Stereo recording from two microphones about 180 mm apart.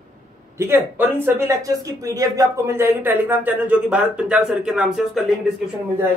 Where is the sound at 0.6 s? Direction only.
10° right (ahead or behind).